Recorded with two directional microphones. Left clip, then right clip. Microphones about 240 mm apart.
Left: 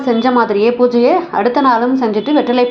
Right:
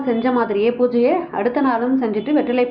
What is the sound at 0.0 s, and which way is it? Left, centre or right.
A woman's voice, centre.